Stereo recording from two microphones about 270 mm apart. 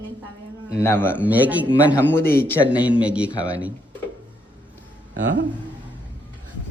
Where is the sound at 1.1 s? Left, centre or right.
Centre.